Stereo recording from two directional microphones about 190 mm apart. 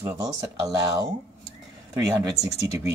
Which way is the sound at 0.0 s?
15° right (ahead or behind).